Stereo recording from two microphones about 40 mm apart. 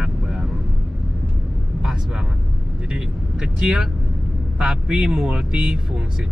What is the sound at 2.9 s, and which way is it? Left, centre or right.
Speech, centre.